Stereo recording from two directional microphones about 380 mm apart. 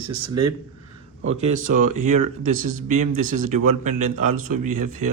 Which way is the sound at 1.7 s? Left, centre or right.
Right.